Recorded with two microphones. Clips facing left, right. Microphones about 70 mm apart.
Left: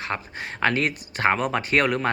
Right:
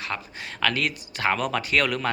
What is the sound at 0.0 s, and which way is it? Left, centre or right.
Speech, left.